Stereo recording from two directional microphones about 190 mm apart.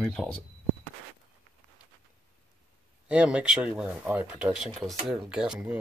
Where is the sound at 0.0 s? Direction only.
5° left (ahead or behind).